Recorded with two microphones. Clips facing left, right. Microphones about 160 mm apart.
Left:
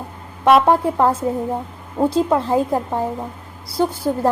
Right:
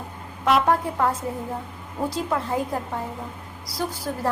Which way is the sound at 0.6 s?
30° left (ahead or behind).